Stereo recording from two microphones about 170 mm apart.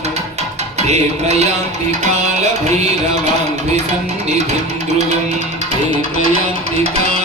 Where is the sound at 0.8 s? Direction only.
40° right (ahead or behind).